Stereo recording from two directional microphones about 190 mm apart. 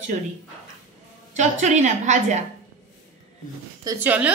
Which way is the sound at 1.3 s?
40° right (ahead or behind).